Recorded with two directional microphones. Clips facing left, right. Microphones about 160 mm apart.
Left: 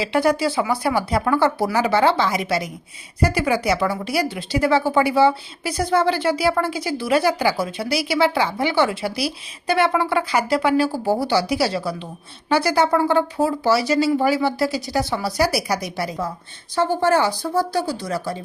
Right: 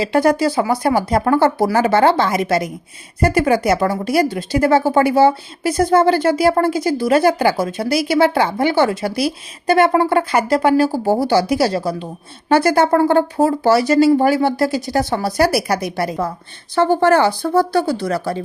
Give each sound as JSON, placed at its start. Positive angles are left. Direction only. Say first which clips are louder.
{"t": 0.0, "sound": "speech", "louder": "right 4 dB", "side_deg": -45}